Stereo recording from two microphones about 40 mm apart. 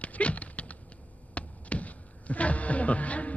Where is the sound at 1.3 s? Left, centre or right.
Left.